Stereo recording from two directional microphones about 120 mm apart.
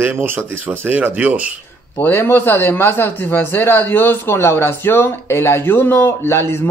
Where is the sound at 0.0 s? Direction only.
15° right (ahead or behind).